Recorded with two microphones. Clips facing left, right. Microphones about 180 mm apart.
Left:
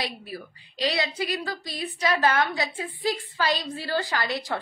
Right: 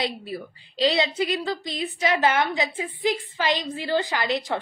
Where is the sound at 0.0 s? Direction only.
25° right (ahead or behind).